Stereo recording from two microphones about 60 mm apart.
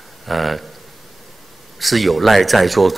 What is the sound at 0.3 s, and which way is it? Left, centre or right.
Speech, centre.